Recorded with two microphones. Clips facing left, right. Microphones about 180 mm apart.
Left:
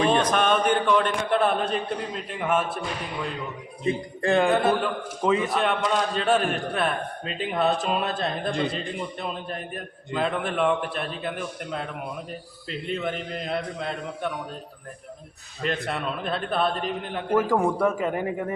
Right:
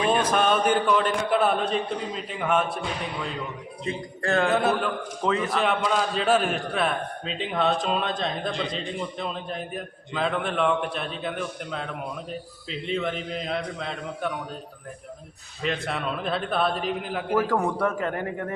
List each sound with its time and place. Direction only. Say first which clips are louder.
0.1 s a man's voice: even; 5° right (ahead or behind)
4.2 s a sound: left 2 dB; 15° left (ahead or behind)
4.4 s a man's voice: left 1 dB; centre (ahead or behind)
15.6 s a man's voice: even; centre (ahead or behind)
17.5 s speech: left 2 dB; 10° left (ahead or behind)